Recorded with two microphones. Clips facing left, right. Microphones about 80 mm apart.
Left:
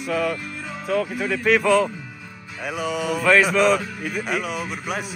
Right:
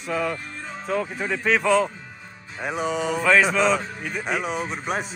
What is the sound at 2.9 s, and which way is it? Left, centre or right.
Speech, centre.